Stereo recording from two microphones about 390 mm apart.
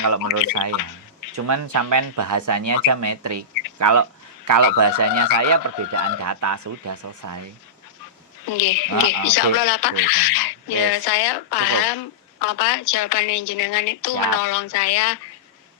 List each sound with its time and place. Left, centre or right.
0.5 s a man's voice: right
8.4 s speech: left